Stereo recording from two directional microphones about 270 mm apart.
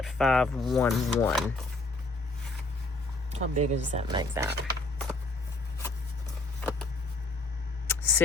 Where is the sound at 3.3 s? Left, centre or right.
Right.